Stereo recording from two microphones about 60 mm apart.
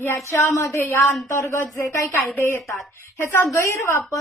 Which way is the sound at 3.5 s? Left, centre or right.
Left.